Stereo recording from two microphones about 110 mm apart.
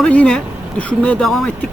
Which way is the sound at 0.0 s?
10° left (ahead or behind).